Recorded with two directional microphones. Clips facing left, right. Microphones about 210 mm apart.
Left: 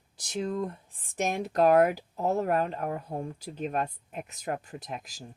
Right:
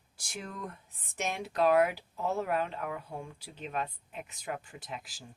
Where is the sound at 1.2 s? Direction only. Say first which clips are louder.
Left 5 dB; 45° left (ahead or behind).